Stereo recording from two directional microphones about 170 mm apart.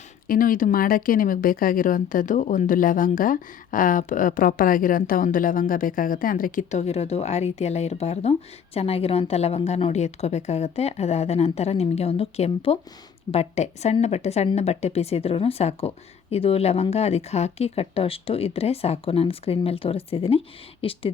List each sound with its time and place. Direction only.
0.3 s a woman's voice: 55° left (ahead or behind); by 21.0 s 35° left (ahead or behind)